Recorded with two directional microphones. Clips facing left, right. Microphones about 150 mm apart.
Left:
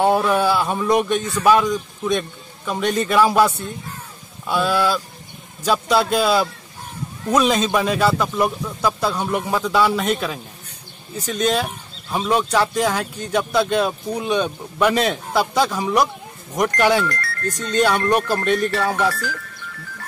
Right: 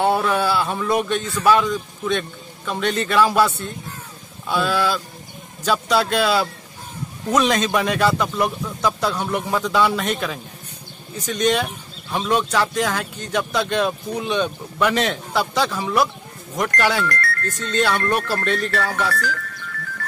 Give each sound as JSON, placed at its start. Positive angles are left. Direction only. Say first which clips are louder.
{"t": 0.0, "sound": "speech", "louder": "left 2 dB", "side_deg": 10}
{"t": 17.1, "sound": "music", "louder": "right 3 dB", "side_deg": -55}
{"t": 17.6, "sound": "speech", "louder": "left 3 dB", "side_deg": 15}